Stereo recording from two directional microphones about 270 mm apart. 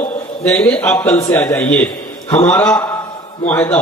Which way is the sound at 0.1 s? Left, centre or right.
Centre.